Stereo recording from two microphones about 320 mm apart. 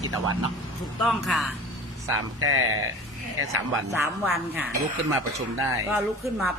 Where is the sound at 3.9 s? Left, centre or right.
Centre.